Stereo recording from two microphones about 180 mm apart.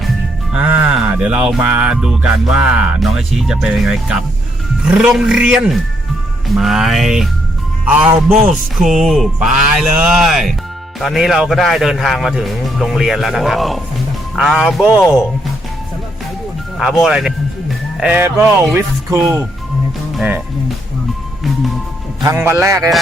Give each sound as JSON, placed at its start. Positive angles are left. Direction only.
{"t": 0.5, "sound": "music", "side_deg": -10}
{"t": 16.7, "sound": "music", "side_deg": 0}
{"t": 18.7, "sound": "speech", "side_deg": -15}
{"t": 22.2, "sound": "speech", "side_deg": -15}